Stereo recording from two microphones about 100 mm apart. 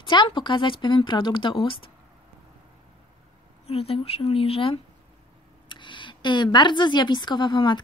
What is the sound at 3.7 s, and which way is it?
Speech, 75° left (ahead or behind).